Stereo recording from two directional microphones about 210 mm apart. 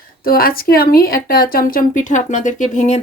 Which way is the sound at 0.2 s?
45° left (ahead or behind).